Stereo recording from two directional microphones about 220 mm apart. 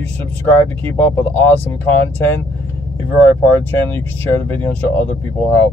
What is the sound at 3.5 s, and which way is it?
Speech, 10° left (ahead or behind).